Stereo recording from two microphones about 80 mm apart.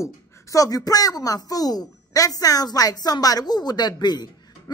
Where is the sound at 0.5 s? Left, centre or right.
Left.